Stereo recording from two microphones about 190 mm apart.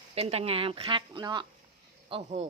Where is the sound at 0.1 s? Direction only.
35° right (ahead or behind).